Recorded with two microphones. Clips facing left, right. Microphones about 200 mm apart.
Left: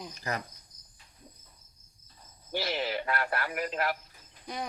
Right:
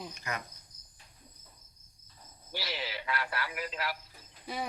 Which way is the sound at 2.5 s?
50° left (ahead or behind).